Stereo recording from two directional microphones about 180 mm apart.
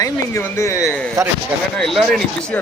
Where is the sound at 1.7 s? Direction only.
Centre (ahead or behind).